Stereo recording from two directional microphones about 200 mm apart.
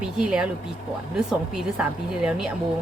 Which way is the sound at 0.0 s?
5° right (ahead or behind).